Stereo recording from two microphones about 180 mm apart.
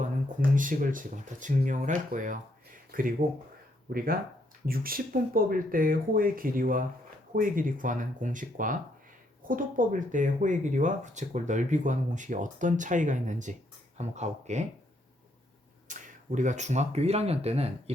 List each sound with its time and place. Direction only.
0.0 s speech: 45° right (ahead or behind)
15.9 s speech: 45° right (ahead or behind)